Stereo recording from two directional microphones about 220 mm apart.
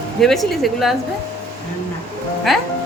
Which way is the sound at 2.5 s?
Centre (ahead or behind).